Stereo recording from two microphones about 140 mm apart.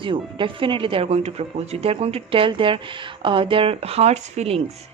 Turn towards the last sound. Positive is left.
turn(degrees=-50)  # may be behind; listen again after turning